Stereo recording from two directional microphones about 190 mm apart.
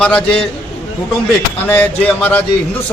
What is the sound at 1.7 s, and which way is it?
Music, 10° left (ahead or behind).